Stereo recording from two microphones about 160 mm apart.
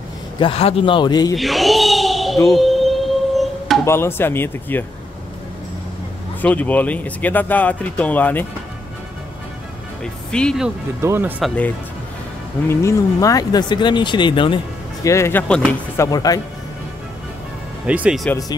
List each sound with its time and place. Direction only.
0.4 s a man's voice: 35° left (ahead or behind)
1.3 s a sound: centre (ahead or behind)
3.8 s speech: 15° left (ahead or behind)
6.4 s speech: 10° left (ahead or behind)
10.3 s speech: 5° left (ahead or behind)
11.0 s speech: 15° right (ahead or behind)
11.4 s speech: 10° left (ahead or behind)
12.6 s speech: 20° left (ahead or behind)
15.0 s speech: 15° left (ahead or behind)
16.0 s speech: 25° left (ahead or behind)
17.8 s speech: 5° right (ahead or behind)